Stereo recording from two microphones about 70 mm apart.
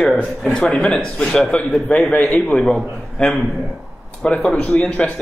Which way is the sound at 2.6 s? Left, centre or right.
Centre.